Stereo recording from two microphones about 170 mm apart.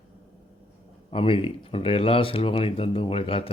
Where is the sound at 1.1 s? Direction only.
30° left (ahead or behind).